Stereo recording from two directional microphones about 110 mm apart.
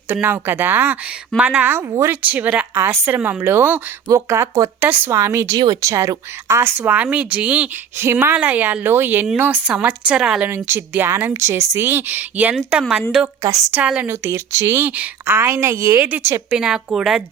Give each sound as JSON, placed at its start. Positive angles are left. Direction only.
{"t": 0.1, "sound": "a woman's voice", "side_deg": -20}
{"t": 2.7, "sound": "a woman's voice", "side_deg": -25}
{"t": 4.1, "sound": "speech", "side_deg": -30}
{"t": 4.8, "sound": "a woman's voice", "side_deg": -20}
{"t": 10.7, "sound": "a woman's voice", "side_deg": -20}
{"t": 13.2, "sound": "a woman's voice", "side_deg": -30}
{"t": 13.8, "sound": "a woman's voice", "side_deg": -10}
{"t": 14.1, "sound": "speech", "side_deg": -20}
{"t": 16.0, "sound": "a woman's voice", "side_deg": -20}
{"t": 16.6, "sound": "a woman's voice", "side_deg": -5}